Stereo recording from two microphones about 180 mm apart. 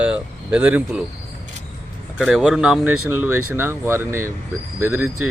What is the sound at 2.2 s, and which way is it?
Speech, 5° right (ahead or behind).